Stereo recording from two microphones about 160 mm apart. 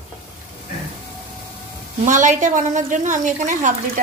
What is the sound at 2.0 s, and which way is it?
A woman's voice, 50° right (ahead or behind).